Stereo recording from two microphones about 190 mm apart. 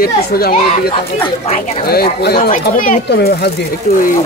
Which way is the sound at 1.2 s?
35° left (ahead or behind).